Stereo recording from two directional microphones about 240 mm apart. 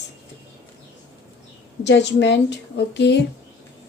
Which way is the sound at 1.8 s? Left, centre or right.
Left.